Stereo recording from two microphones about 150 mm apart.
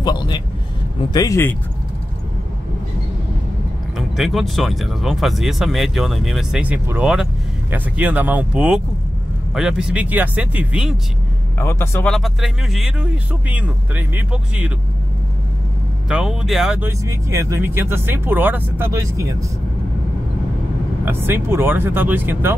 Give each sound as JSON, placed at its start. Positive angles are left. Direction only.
{"t": 0.0, "sound": "speech", "side_deg": 30}
{"t": 4.2, "sound": "speech", "side_deg": 0}
{"t": 11.5, "sound": "a man's voice", "side_deg": 15}
{"t": 12.1, "sound": "speech", "side_deg": 0}
{"t": 16.1, "sound": "speech", "side_deg": -5}
{"t": 16.8, "sound": "speech", "side_deg": -20}
{"t": 21.0, "sound": "speech", "side_deg": -15}